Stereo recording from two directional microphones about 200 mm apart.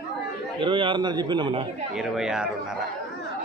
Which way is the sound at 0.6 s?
25° right (ahead or behind).